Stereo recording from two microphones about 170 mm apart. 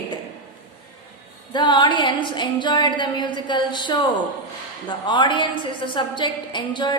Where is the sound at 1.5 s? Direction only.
25° left (ahead or behind).